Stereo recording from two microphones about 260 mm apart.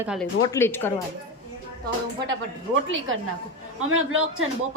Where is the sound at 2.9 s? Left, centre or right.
Right.